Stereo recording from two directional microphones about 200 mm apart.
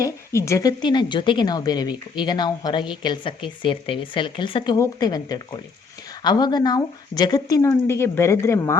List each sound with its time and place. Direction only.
0.0 s speech: 15° left (ahead or behind)